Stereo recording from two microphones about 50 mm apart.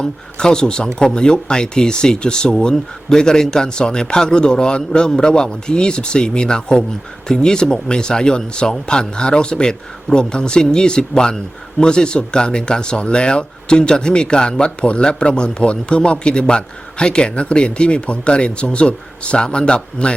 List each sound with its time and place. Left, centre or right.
0.0 s a man's voice: centre